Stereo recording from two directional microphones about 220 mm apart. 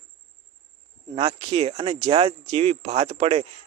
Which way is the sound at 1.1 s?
20° right (ahead or behind).